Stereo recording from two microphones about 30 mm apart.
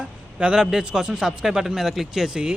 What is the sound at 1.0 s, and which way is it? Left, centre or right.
Speech, right.